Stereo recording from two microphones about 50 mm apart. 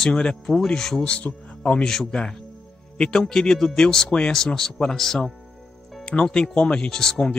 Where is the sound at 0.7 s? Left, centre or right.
Centre.